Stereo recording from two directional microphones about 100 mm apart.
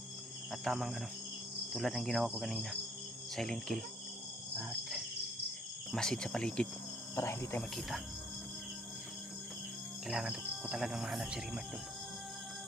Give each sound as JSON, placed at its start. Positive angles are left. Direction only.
{"t": 0.5, "sound": "speech", "side_deg": 0}
{"t": 5.9, "sound": "cricket", "side_deg": 5}
{"t": 7.2, "sound": "cricket", "side_deg": 25}
{"t": 7.8, "sound": "speech", "side_deg": 0}
{"t": 10.1, "sound": "speech", "side_deg": -5}